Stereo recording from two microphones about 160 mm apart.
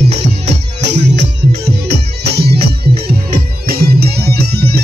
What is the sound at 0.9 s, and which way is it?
Music, 90° right.